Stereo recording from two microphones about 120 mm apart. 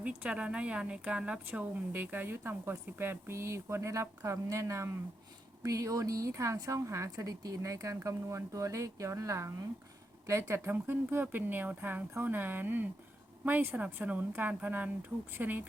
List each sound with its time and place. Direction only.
0.0 s a woman's voice: 10° right (ahead or behind)